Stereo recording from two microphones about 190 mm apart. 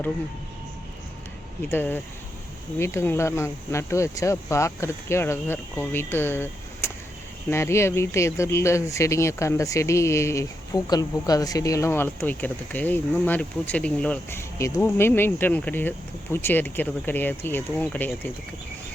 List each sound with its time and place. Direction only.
1.7 s speech: 10° left (ahead or behind)